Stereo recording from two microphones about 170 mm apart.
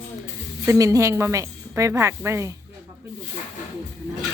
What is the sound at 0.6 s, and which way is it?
A woman's voice, 20° right (ahead or behind).